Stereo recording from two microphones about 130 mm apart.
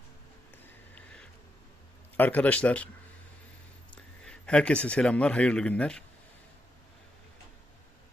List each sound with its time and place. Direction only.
0.9 s a sound: 10° left (ahead or behind)
2.1 s speech: 15° left (ahead or behind)
3.9 s speech: 5° left (ahead or behind)